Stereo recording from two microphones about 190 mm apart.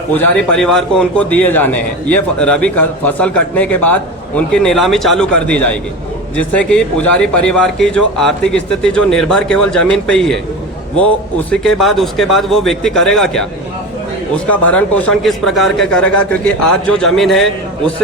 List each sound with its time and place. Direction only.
0.2 s a man's voice: 5° left (ahead or behind)
11.5 s speech: 5° left (ahead or behind)
14.4 s speech: 5° left (ahead or behind)